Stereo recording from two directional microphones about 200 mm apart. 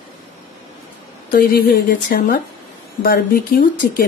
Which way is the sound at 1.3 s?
45° left (ahead or behind).